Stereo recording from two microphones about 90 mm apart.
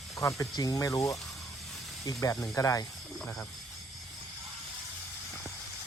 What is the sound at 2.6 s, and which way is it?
Speech, 40° left (ahead or behind).